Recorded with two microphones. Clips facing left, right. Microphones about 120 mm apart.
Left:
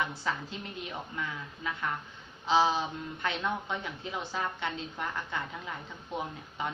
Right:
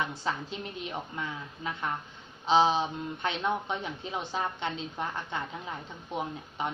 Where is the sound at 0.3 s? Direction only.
25° right (ahead or behind).